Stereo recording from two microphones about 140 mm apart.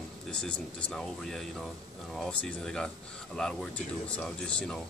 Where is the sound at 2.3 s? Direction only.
5° left (ahead or behind).